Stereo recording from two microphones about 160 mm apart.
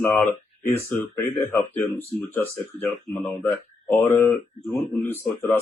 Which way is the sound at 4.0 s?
15° left (ahead or behind).